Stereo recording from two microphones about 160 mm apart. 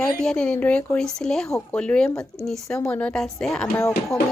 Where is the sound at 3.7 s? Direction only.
20° left (ahead or behind).